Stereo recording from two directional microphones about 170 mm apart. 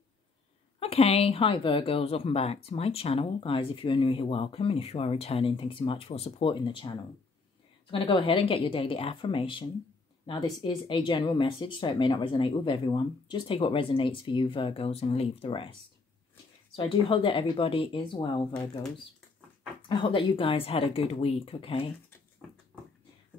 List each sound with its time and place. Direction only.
0.7 s speech: 35° left (ahead or behind)
16.7 s speech: 30° left (ahead or behind)
19.9 s speech: 30° left (ahead or behind)